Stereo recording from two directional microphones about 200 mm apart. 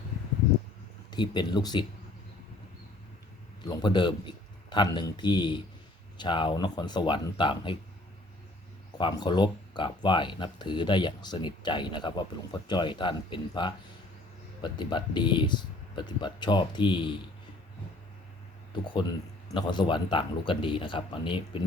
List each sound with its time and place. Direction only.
1.1 s speech: 20° left (ahead or behind)
3.7 s speech: 20° left (ahead or behind)
9.0 s speech: 25° left (ahead or behind)
18.7 s speech: 25° left (ahead or behind)